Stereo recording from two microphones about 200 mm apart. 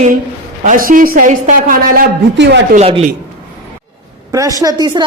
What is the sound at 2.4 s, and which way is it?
Speech, 65° right (ahead or behind).